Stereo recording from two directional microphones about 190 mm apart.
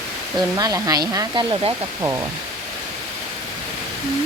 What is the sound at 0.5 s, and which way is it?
Speech, 20° right (ahead or behind).